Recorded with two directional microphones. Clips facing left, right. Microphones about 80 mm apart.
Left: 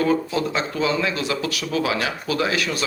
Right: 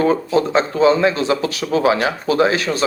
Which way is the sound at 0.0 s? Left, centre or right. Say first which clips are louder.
Right 5 dB; right.